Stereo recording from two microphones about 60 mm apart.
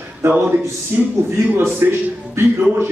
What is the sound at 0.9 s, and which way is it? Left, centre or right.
Speech, right.